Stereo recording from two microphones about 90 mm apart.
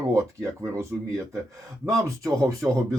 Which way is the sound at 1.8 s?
35° right (ahead or behind).